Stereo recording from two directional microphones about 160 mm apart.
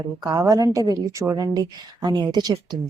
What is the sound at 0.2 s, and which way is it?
A woman's voice, 20° right (ahead or behind).